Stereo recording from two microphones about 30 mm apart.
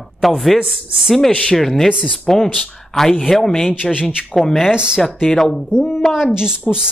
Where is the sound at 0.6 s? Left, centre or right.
Centre.